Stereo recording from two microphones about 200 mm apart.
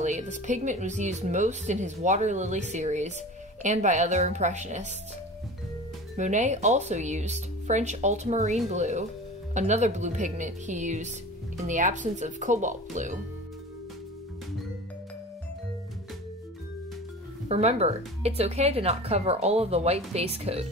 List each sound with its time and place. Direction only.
0.0 s speech: 35° right (ahead or behind)
6.1 s speech: 35° right (ahead or behind)
17.5 s speech: 35° right (ahead or behind)